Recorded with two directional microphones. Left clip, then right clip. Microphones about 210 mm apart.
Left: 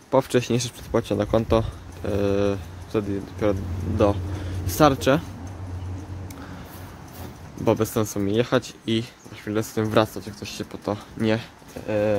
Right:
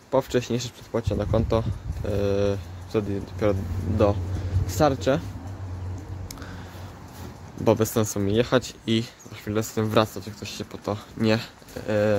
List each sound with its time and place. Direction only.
0.1 s speech: 5° left (ahead or behind)
4.6 s speech: 10° left (ahead or behind)
7.6 s speech: 10° right (ahead or behind)
11.1 s speech: 15° right (ahead or behind)